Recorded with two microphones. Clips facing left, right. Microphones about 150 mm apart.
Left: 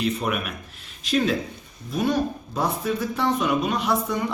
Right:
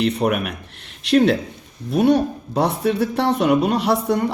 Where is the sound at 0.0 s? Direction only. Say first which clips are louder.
Right 6 dB; 65° right (ahead or behind).